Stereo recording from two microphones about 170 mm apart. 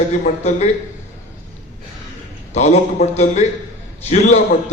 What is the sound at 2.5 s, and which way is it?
Speech, 40° left (ahead or behind).